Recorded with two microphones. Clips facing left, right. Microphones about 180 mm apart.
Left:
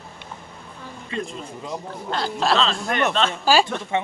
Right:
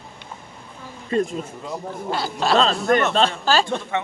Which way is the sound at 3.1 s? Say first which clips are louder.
Right 3 dB; 35° right (ahead or behind).